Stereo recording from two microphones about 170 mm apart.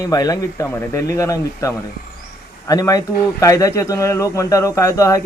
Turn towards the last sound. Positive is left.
turn(degrees=20)  # may be behind; listen again after turning